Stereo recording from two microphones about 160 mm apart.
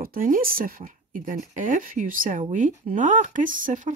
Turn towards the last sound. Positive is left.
turn(degrees=-55)  # may be behind; listen again after turning